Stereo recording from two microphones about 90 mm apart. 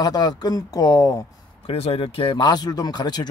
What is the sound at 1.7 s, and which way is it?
Speech, 90° left.